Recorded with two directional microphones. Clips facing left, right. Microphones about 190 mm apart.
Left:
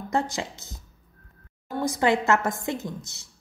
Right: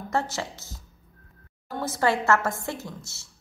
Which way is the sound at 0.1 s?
15° left (ahead or behind).